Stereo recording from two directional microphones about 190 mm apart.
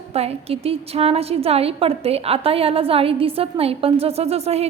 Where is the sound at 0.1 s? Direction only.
30° right (ahead or behind).